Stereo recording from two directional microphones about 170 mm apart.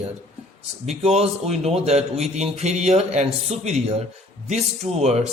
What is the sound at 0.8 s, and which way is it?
A man's voice, 40° right (ahead or behind).